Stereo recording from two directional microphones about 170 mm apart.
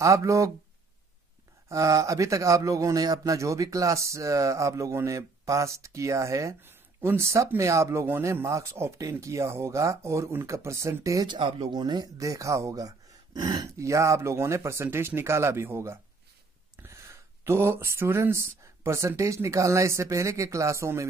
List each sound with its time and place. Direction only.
0.0 s speech: 20° right (ahead or behind)
1.7 s speech: 20° right (ahead or behind)